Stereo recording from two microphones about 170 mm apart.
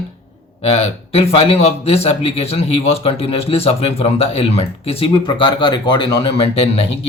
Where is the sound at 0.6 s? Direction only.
35° left (ahead or behind).